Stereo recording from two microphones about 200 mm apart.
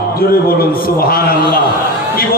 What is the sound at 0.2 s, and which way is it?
A man's voice, 50° left (ahead or behind).